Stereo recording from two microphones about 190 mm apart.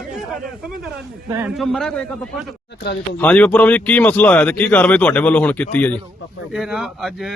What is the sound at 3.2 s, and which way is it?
Speech, 10° left (ahead or behind).